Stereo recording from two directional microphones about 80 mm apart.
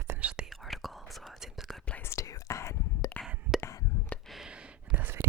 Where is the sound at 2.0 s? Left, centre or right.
Left.